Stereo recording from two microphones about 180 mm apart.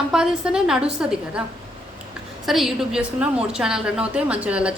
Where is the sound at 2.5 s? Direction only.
Centre (ahead or behind).